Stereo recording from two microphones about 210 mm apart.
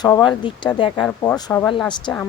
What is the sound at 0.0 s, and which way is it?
Speech, 20° left (ahead or behind).